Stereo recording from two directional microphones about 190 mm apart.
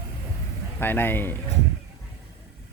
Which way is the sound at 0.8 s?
10° left (ahead or behind).